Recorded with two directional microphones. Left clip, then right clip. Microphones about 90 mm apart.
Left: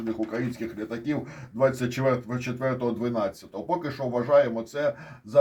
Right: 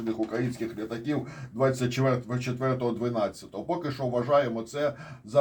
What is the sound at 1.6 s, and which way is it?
Speech, 10° right (ahead or behind).